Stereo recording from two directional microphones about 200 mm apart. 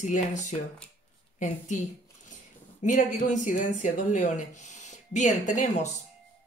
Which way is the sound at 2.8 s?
35° left (ahead or behind).